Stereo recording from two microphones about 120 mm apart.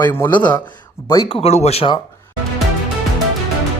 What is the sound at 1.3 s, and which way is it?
Speech, 60° left (ahead or behind).